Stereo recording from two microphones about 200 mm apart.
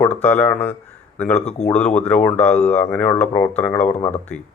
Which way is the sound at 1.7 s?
5° left (ahead or behind).